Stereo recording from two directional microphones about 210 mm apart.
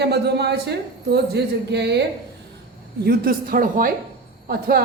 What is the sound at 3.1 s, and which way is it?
Speech, 45° right (ahead or behind).